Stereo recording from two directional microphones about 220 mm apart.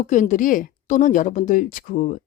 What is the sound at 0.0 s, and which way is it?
A woman's voice, 35° left (ahead or behind).